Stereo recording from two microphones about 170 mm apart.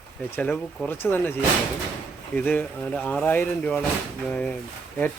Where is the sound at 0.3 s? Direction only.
10° left (ahead or behind).